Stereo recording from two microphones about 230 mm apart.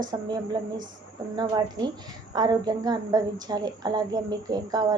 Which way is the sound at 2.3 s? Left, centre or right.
Centre.